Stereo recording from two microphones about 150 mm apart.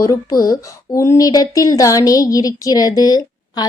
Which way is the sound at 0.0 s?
20° left (ahead or behind).